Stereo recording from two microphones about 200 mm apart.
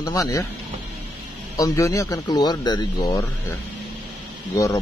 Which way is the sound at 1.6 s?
15° left (ahead or behind).